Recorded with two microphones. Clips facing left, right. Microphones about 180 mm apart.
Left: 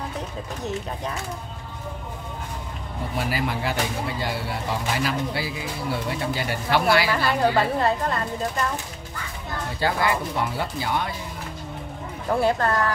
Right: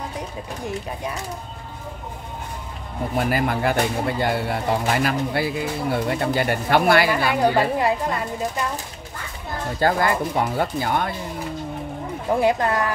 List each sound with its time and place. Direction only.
3.2 s speech: 50° right (ahead or behind)
7.1 s a woman's voice: 15° right (ahead or behind)
9.8 s speech: 50° right (ahead or behind)
12.3 s a woman's voice: 15° right (ahead or behind)